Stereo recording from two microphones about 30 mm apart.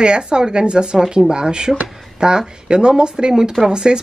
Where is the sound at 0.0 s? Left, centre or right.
Right.